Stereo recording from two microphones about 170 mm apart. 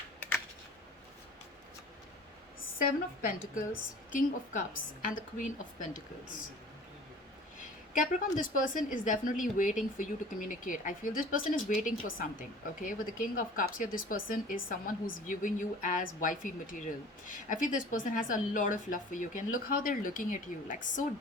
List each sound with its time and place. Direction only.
0.2 s typing: 15° left (ahead or behind)
2.7 s a woman's voice: 55° left (ahead or behind)
7.9 s a woman's voice: 50° left (ahead or behind)